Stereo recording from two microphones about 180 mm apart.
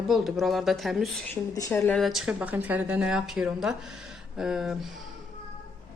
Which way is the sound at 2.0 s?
Centre (ahead or behind).